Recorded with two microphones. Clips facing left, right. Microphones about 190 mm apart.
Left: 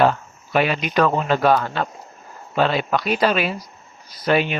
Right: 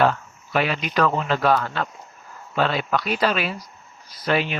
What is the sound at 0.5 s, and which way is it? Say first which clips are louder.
Speech: left 3 dB; 15° left (ahead or behind).